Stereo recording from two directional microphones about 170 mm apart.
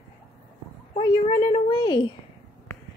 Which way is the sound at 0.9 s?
30° left (ahead or behind).